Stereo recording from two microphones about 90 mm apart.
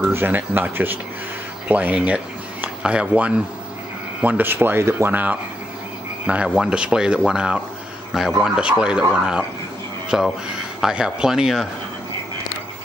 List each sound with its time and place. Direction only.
0.0 s speech: 20° right (ahead or behind); by 11.6 s 5° right (ahead or behind)